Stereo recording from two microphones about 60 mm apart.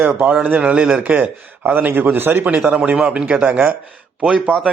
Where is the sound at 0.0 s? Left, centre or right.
Right.